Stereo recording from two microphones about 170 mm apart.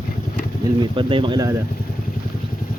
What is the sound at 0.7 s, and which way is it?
Speech, 30° right (ahead or behind).